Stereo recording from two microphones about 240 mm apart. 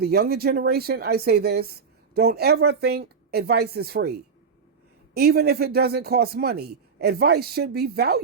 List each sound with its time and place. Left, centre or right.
0.0 s a man's voice: right